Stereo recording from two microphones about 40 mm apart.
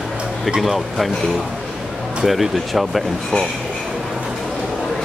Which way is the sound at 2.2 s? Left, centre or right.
Centre.